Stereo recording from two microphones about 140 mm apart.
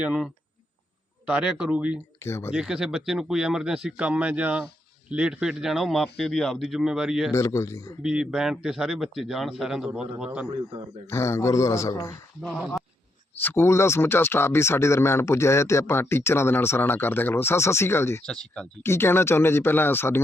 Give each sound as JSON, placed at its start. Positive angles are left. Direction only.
{"t": 0.0, "sound": "a man's voice", "side_deg": -5}
{"t": 1.3, "sound": "a man's voice", "side_deg": -5}
{"t": 2.2, "sound": "speech", "side_deg": 20}
{"t": 2.5, "sound": "a man's voice", "side_deg": -5}
{"t": 7.3, "sound": "speech", "side_deg": 20}
{"t": 8.0, "sound": "a man's voice", "side_deg": -5}
{"t": 11.1, "sound": "speech", "side_deg": 20}
{"t": 12.4, "sound": "a man's voice", "side_deg": 5}
{"t": 13.3, "sound": "speech", "side_deg": 15}
{"t": 18.3, "sound": "a man's voice", "side_deg": 5}
{"t": 18.8, "sound": "speech", "side_deg": 20}